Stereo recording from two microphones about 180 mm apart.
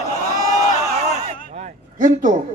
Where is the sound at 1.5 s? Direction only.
40° right (ahead or behind).